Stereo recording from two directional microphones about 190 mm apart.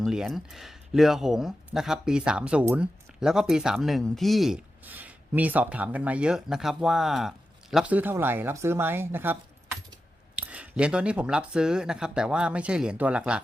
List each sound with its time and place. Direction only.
0.0 s speech: centre (ahead or behind)